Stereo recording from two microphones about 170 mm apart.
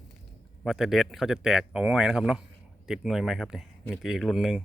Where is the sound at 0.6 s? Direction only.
Centre (ahead or behind).